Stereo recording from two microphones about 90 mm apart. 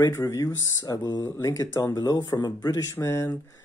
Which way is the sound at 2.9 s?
30° left (ahead or behind).